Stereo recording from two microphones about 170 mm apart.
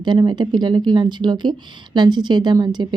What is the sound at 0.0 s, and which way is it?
Speech, 25° right (ahead or behind).